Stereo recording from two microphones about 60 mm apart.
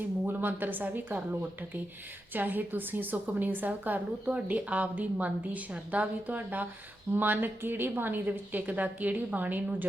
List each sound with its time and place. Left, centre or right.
0.3 s a woman's voice: right